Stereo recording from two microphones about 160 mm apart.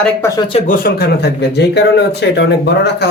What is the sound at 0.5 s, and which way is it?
Speech, 55° left (ahead or behind).